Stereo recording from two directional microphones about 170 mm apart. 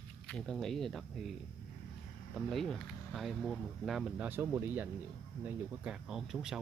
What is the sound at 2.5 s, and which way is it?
Speech, centre (ahead or behind).